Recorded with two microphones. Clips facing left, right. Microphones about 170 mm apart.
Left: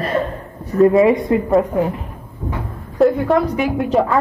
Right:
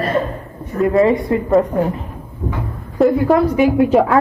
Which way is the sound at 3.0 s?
Centre (ahead or behind).